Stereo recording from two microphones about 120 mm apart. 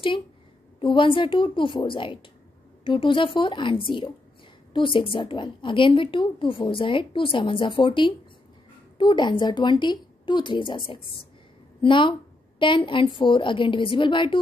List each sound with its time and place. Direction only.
0.7 s a woman's voice: 45° left (ahead or behind)